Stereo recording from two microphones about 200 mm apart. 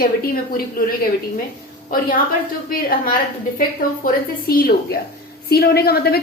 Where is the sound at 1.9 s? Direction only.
45° left (ahead or behind).